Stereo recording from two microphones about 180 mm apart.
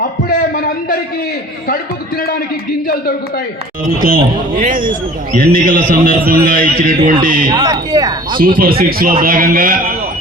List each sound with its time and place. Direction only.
0.3 s a sound: 50° left (ahead or behind)
1.6 s a man's voice: 55° left (ahead or behind)
4.6 s a man's voice: 50° right (ahead or behind)
7.4 s speech: 20° right (ahead or behind)
8.4 s a man's voice: 50° right (ahead or behind)